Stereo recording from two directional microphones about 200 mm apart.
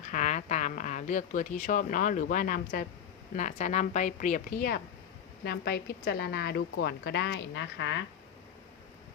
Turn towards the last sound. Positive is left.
turn(degrees=65)  # may be behind; listen again after turning